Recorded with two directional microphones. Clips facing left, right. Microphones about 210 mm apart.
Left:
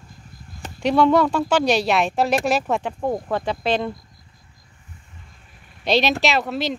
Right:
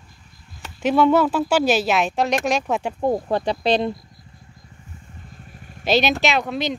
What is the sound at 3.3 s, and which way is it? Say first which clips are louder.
Speech: right 2 dB; 35° right (ahead or behind).